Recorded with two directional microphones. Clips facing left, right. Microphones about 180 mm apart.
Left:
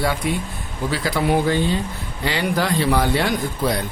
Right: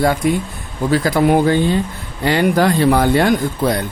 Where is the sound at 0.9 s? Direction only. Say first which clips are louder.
Right 6 dB; 45° right (ahead or behind).